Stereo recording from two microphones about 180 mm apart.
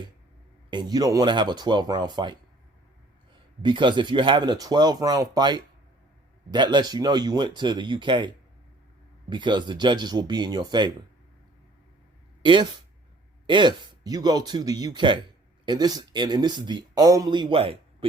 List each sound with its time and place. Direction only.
0.7 s speech: 25° right (ahead or behind)
3.6 s speech: 25° right (ahead or behind)
12.4 s speech: 25° right (ahead or behind)